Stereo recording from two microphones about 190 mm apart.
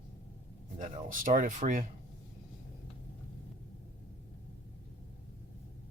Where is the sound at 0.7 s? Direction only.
45° right (ahead or behind).